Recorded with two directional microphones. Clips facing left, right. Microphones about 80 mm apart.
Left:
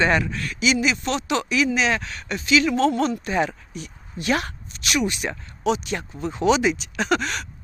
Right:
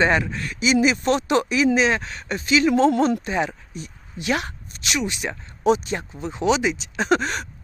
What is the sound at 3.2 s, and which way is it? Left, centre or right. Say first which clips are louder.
Speech: left 1 dB; centre.